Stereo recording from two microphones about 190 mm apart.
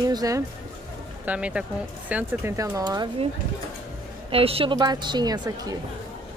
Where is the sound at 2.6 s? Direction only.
15° right (ahead or behind).